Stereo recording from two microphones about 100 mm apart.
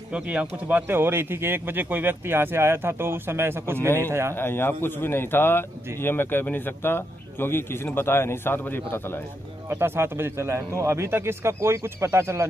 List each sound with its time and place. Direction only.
0.1 s speech: 10° right (ahead or behind)
3.7 s speech: 25° left (ahead or behind)
4.0 s speech: 25° right (ahead or behind)
4.4 s speech: 20° left (ahead or behind)
9.7 s speech: 25° right (ahead or behind)